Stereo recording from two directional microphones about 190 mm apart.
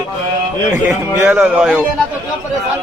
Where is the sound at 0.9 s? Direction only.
10° right (ahead or behind).